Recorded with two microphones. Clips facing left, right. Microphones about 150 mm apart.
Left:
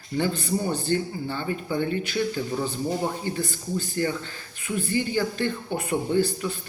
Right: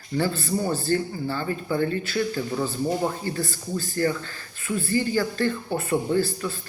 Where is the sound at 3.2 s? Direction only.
15° left (ahead or behind).